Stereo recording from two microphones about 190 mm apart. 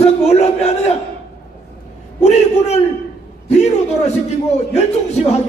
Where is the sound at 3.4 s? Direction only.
35° left (ahead or behind).